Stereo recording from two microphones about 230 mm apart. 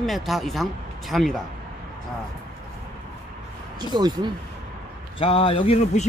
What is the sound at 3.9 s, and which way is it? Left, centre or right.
Speech, centre.